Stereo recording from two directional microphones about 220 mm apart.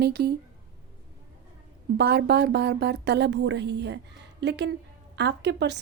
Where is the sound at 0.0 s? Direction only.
45° right (ahead or behind).